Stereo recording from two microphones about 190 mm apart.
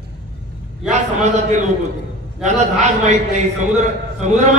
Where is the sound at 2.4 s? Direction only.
40° right (ahead or behind).